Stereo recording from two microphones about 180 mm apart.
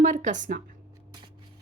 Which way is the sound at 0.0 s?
45° right (ahead or behind).